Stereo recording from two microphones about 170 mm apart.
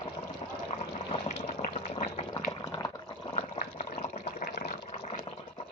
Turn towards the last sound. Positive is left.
turn(degrees=35)  # may be behind; listen again after turning